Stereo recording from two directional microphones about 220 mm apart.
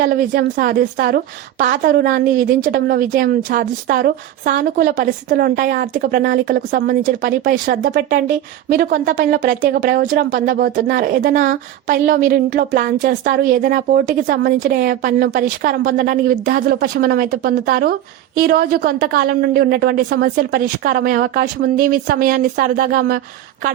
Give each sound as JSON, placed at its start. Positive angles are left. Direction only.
{"t": 0.0, "sound": "a woman's voice", "side_deg": -40}